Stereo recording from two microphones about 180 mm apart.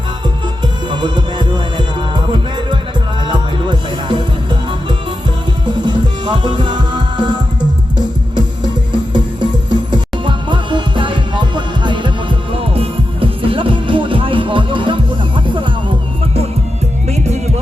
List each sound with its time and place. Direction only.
0.6 s music: 25° right (ahead or behind)
5.6 s music: 25° right (ahead or behind)
9.1 s music: 25° right (ahead or behind)
17.1 s music: 40° right (ahead or behind)